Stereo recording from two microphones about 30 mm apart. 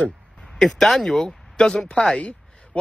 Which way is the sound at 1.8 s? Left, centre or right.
Left.